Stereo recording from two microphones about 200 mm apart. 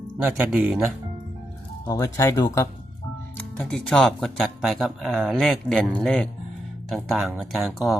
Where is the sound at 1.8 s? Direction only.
15° left (ahead or behind).